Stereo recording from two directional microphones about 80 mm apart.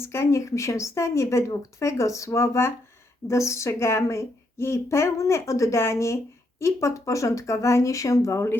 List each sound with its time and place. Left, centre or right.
0.0 s a woman's voice: left